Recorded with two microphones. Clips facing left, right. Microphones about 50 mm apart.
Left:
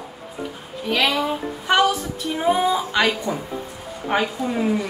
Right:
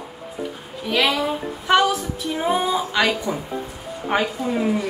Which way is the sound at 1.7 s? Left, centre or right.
Centre.